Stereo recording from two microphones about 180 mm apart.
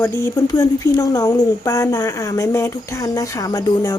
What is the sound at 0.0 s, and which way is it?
A woman's voice, 15° left (ahead or behind).